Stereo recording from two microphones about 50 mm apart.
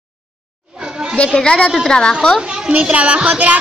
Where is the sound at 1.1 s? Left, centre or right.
Left.